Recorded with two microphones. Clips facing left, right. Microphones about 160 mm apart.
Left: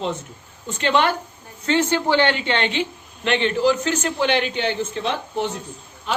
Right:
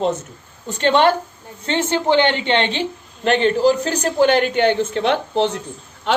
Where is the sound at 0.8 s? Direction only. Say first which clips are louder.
Right 5 dB; 35° right (ahead or behind).